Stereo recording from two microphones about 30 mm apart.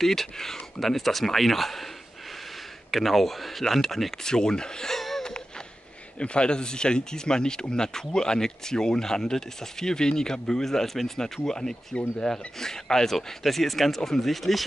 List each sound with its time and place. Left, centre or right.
0.0 s speech: centre
2.9 s speech: centre
4.2 s speech: left
4.9 s wheeze: centre
6.1 s speech: left; by 11.5 s centre
11.9 s speech: left
12.3 s speech: centre